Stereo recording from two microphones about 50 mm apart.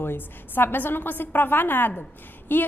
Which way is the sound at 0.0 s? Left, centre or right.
Left.